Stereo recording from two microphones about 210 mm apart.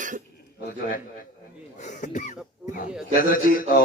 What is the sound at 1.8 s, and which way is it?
A man's voice, 35° left (ahead or behind).